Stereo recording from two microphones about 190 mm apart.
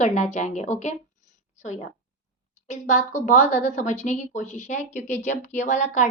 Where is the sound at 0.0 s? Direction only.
40° left (ahead or behind).